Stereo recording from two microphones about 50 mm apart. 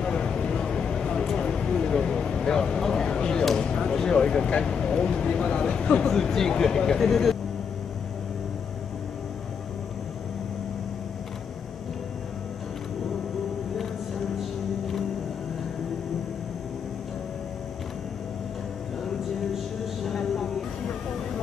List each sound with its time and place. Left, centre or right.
0.0 s a sound: centre
6.0 s speech: centre
19.5 s music: centre